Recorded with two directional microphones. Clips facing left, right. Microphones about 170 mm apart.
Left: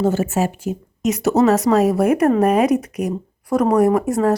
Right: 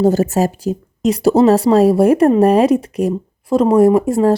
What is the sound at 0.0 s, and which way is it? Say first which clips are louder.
A woman's voice: right 5 dB; 40° right (ahead or behind).